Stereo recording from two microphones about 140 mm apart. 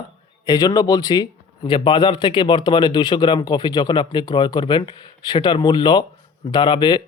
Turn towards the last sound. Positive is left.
turn(degrees=35)  # may be behind; listen again after turning